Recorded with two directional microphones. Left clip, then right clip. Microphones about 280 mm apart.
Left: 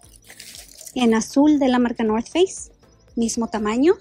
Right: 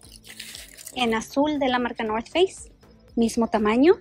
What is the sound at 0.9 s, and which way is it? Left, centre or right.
Speech, centre.